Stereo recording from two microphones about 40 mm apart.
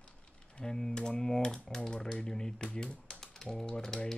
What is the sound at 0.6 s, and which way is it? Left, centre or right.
Speech, centre.